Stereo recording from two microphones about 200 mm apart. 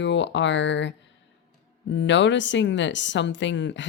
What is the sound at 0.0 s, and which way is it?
Speech, 65° left (ahead or behind).